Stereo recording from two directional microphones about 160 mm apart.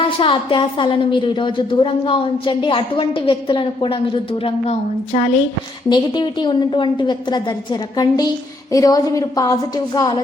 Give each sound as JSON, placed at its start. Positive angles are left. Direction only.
{"t": 0.0, "sound": "a woman's voice", "side_deg": 30}
{"t": 5.9, "sound": "a woman's voice", "side_deg": 30}